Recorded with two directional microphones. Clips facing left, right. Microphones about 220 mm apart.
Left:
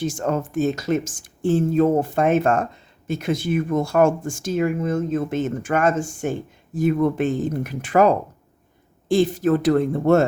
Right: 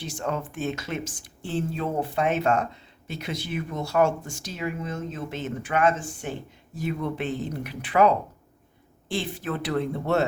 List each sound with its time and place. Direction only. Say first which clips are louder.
0.0 s speech: left 7 dB; 45° left (ahead or behind)